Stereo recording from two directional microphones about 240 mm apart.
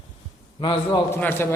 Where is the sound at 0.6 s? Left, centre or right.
Centre.